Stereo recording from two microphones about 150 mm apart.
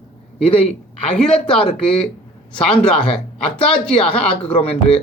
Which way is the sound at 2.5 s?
5° left (ahead or behind).